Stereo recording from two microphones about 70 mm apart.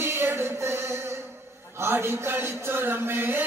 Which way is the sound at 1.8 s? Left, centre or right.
Right.